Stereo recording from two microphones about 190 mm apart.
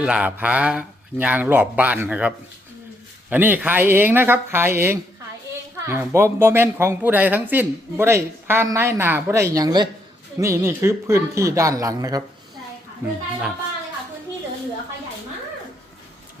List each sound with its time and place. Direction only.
0.0 s speech: 5° right (ahead or behind)
5.7 s a sound: 15° right (ahead or behind)
6.1 s speech: 15° right (ahead or behind)